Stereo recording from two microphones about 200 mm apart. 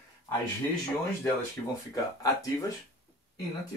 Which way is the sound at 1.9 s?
15° left (ahead or behind).